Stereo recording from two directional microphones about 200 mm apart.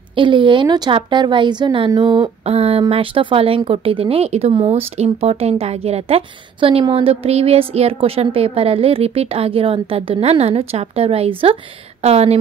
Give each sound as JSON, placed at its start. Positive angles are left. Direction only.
{"t": 0.1, "sound": "a woman's voice", "side_deg": -25}